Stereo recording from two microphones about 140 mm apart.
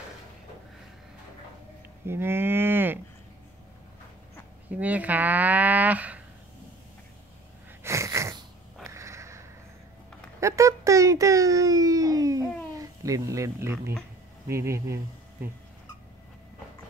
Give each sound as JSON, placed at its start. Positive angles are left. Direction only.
{"t": 2.0, "sound": "livestock", "side_deg": -15}
{"t": 4.6, "sound": "speech", "side_deg": -10}
{"t": 7.8, "sound": "sneeze", "side_deg": -20}
{"t": 8.8, "sound": "sniff", "side_deg": -20}
{"t": 10.4, "sound": "a sound", "side_deg": -20}
{"t": 14.5, "sound": "speech", "side_deg": -20}